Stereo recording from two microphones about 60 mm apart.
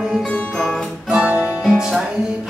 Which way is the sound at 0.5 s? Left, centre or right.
Centre.